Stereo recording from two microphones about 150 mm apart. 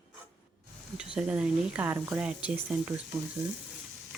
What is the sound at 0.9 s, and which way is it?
Speech, 5° right (ahead or behind).